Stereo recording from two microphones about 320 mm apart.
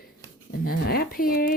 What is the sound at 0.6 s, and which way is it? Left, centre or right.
Speech, left.